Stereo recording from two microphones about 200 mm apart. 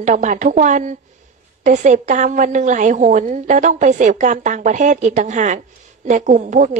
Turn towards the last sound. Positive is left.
turn(degrees=-40)  # may be behind; listen again after turning